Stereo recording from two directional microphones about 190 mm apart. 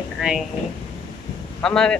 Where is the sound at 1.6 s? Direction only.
5° left (ahead or behind).